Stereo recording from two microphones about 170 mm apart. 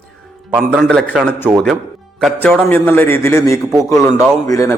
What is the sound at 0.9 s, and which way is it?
A man's voice, 5° left (ahead or behind).